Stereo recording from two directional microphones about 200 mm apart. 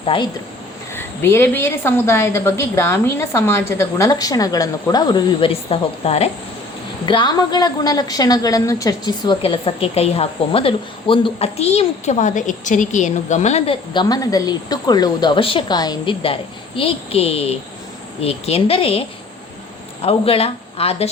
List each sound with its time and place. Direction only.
0.0 s speech: 25° left (ahead or behind)
0.9 s a woman's voice: 10° left (ahead or behind); by 21.1 s 30° left (ahead or behind)